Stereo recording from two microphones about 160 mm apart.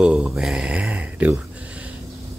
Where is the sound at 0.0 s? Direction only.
5° right (ahead or behind).